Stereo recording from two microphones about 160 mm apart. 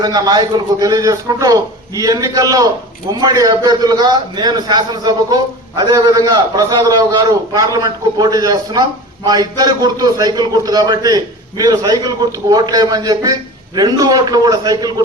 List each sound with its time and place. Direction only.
0.0 s a man's voice: 25° right (ahead or behind)